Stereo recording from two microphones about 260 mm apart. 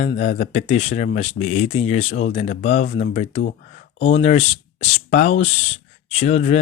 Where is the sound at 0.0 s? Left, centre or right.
Left.